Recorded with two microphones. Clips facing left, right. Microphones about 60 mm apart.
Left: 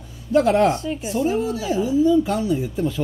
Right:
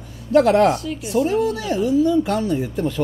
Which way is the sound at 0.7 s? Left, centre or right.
Left.